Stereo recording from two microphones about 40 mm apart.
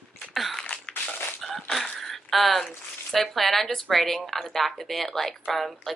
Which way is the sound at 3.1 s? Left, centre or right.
Centre.